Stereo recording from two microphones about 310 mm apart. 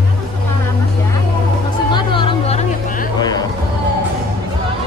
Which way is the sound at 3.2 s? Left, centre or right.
Centre.